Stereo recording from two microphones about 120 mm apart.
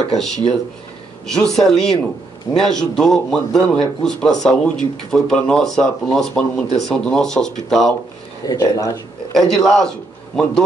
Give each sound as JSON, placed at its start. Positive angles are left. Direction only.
{"t": 1.2, "sound": "speech", "side_deg": 5}
{"t": 8.5, "sound": "speech", "side_deg": 30}
{"t": 9.3, "sound": "a man's voice", "side_deg": 5}